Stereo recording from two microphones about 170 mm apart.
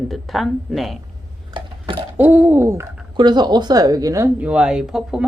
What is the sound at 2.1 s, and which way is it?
Speech, 10° right (ahead or behind).